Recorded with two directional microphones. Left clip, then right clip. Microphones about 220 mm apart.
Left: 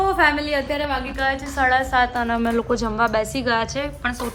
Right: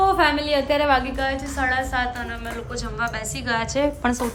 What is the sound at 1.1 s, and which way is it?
Speech, 5° right (ahead or behind).